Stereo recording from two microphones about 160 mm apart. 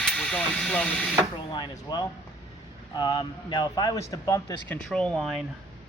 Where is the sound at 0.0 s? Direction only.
5° left (ahead or behind).